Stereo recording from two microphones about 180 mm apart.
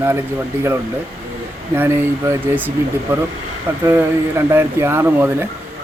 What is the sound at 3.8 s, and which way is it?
Speech, 15° right (ahead or behind).